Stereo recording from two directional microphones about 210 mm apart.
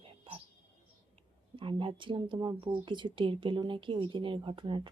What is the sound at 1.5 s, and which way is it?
Speech, 25° right (ahead or behind).